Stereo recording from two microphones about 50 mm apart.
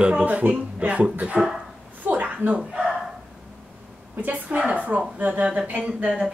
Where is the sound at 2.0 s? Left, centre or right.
Right.